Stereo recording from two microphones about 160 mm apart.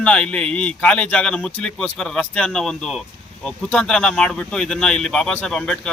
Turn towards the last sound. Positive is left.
turn(degrees=5)  # may be behind; listen again after turning